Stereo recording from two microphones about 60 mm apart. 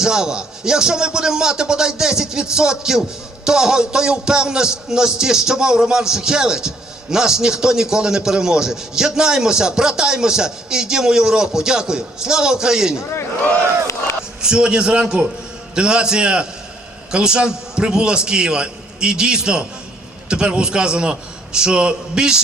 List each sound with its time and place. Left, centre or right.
0.0 s a man's voice: centre
13.0 s a man's voice: left
14.4 s a man's voice: centre